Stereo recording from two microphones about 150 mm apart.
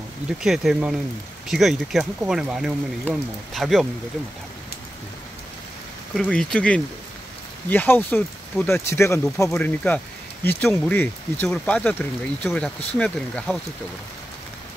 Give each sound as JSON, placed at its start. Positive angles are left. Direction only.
{"t": 0.4, "sound": "speech", "side_deg": -5}
{"t": 6.1, "sound": "speech", "side_deg": 5}